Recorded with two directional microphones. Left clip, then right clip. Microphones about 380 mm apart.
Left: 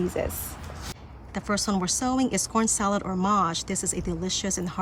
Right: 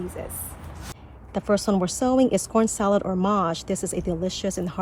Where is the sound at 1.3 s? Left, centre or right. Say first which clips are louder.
Right 5 dB; centre.